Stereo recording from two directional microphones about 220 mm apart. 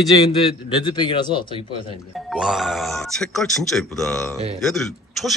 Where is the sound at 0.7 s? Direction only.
20° left (ahead or behind).